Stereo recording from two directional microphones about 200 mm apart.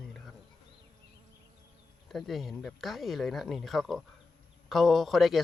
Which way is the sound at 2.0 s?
Centre (ahead or behind).